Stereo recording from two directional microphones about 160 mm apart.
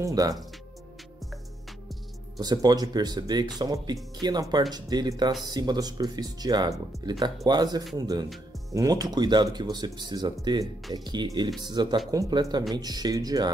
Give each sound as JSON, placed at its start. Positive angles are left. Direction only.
{"t": 0.0, "sound": "speech", "side_deg": -20}
{"t": 2.4, "sound": "speech", "side_deg": -25}